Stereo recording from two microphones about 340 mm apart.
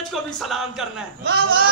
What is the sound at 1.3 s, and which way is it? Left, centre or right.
Speech, right.